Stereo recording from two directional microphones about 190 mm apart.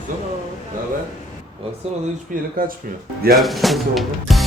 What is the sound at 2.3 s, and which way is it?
Speech, 50° right (ahead or behind).